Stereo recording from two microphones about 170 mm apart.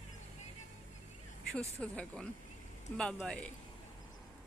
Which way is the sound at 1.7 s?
5° left (ahead or behind).